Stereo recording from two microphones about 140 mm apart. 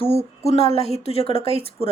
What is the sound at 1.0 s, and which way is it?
Speech, 45° left (ahead or behind).